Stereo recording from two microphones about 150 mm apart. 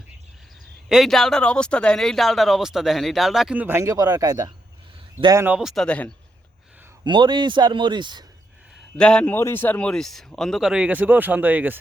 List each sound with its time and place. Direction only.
0.9 s speech: centre (ahead or behind); by 5.5 s 20° right (ahead or behind)
5.5 s speech: 5° right (ahead or behind)
7.0 s speech: 30° right (ahead or behind)
9.0 s speech: 5° left (ahead or behind); by 11.8 s 10° right (ahead or behind)